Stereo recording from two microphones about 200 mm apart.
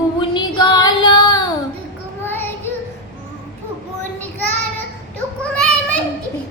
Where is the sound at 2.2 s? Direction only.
10° left (ahead or behind).